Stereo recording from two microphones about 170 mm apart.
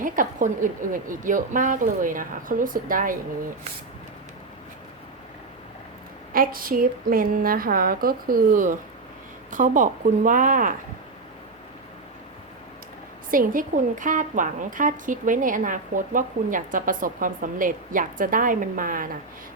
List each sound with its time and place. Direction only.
0.0 s a woman's voice: 50° right (ahead or behind)
6.3 s a woman's voice: 55° right (ahead or behind)
13.3 s a woman's voice: 55° right (ahead or behind)